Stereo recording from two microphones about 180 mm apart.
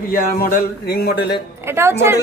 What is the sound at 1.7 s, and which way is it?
Speech, 15° right (ahead or behind).